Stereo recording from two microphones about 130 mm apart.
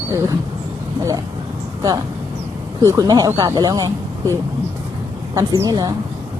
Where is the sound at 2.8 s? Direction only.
25° right (ahead or behind).